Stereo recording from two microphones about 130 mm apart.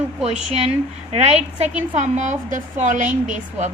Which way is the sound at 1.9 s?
70° right (ahead or behind).